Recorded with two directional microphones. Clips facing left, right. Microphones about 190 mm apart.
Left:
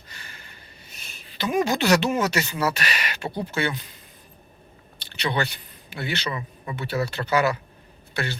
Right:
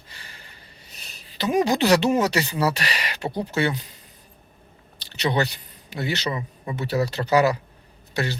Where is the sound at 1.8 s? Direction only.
35° right (ahead or behind).